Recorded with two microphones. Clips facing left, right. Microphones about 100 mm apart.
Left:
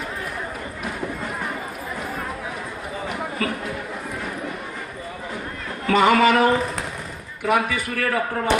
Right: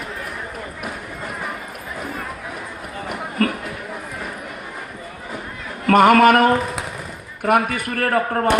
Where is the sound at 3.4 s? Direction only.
55° right (ahead or behind).